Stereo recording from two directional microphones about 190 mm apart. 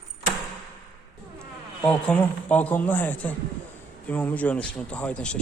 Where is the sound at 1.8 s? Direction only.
5° left (ahead or behind).